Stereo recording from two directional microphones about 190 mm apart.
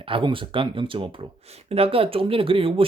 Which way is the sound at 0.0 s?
25° right (ahead or behind).